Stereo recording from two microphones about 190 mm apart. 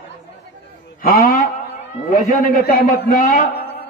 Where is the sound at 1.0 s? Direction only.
45° left (ahead or behind).